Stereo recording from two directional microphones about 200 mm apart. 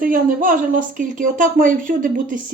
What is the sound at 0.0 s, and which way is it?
Speech, 40° right (ahead or behind).